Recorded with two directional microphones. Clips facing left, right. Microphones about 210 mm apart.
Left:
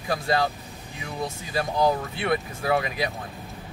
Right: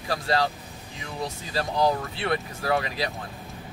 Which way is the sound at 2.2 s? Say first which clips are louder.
Left 2 dB; 20° left (ahead or behind).